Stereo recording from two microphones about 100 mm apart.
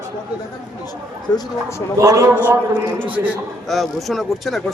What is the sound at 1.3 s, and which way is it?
Speech, 50° left (ahead or behind).